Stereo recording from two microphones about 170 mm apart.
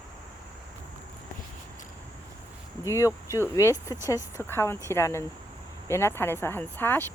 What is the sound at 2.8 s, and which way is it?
Speech, 20° left (ahead or behind).